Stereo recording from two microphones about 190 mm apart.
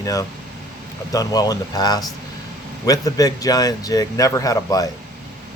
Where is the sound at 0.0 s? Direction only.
15° left (ahead or behind).